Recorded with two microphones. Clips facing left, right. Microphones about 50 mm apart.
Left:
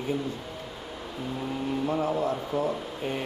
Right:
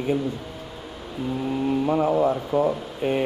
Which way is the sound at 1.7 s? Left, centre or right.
Right.